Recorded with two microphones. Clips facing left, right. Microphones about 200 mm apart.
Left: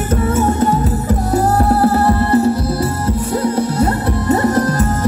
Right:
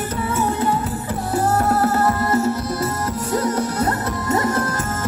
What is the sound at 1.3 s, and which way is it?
Music, 35° left (ahead or behind).